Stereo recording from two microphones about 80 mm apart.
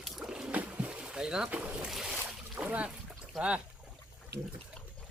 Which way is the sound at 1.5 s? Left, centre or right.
Centre.